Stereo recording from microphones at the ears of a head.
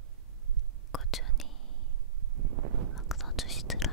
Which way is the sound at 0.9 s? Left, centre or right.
Left.